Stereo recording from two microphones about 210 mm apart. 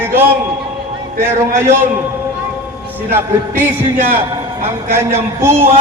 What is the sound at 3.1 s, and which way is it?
Music, 10° right (ahead or behind).